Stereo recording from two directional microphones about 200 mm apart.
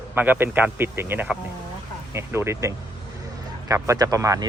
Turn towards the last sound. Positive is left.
turn(degrees=-15)  # may be behind; listen again after turning